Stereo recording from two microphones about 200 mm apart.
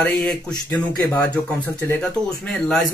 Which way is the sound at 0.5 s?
15° left (ahead or behind).